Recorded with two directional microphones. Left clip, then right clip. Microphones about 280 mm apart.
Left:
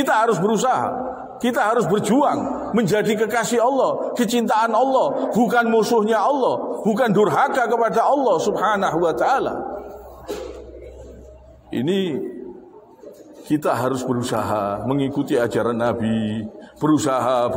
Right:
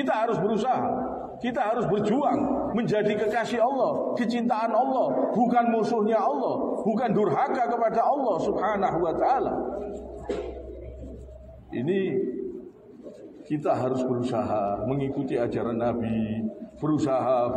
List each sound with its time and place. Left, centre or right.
0.0 s a man's voice: left
11.7 s a man's voice: left
13.5 s a man's voice: left